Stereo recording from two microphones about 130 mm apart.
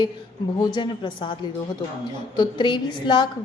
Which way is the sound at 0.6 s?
35° left (ahead or behind).